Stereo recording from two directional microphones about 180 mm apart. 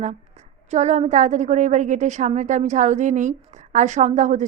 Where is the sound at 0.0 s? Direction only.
40° right (ahead or behind).